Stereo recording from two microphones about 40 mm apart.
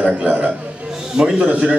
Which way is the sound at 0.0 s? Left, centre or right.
Right.